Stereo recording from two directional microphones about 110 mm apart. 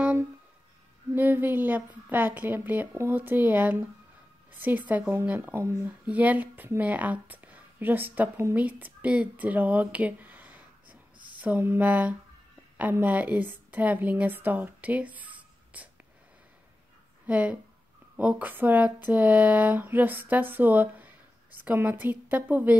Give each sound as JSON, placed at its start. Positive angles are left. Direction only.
{"t": 1.1, "sound": "speech", "side_deg": -15}
{"t": 6.0, "sound": "a woman's voice", "side_deg": -15}
{"t": 17.3, "sound": "speech", "side_deg": -10}